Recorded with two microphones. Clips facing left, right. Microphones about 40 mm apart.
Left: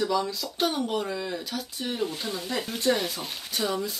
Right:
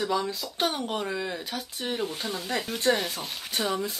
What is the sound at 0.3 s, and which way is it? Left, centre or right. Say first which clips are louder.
Speech: left 1 dB; right.